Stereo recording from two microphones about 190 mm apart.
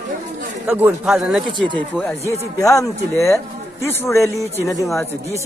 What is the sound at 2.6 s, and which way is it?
A woman's voice, 15° left (ahead or behind).